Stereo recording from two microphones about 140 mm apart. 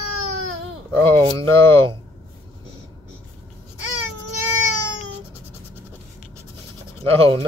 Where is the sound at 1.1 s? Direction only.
40° right (ahead or behind).